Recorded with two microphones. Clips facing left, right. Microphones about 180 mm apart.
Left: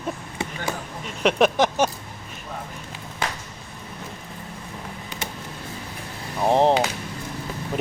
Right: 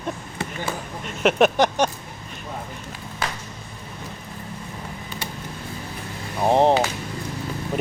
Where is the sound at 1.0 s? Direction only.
5° right (ahead or behind).